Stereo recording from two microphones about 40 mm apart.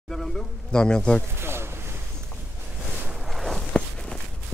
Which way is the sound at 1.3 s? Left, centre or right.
Right.